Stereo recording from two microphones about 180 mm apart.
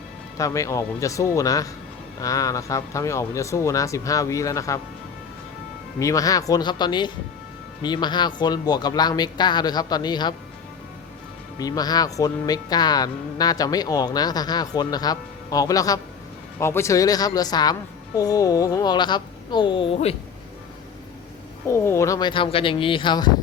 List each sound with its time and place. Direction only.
0.3 s speech: 15° left (ahead or behind)
6.0 s speech: 20° left (ahead or behind)
11.6 s speech: 20° left (ahead or behind)
21.7 s speech: 15° left (ahead or behind)